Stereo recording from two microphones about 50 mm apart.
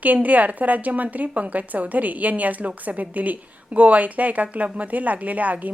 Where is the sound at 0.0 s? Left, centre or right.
Right.